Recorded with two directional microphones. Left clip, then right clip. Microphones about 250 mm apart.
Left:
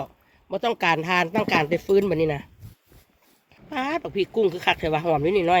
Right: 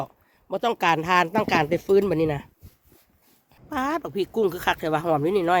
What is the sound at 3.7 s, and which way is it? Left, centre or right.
Speech, centre.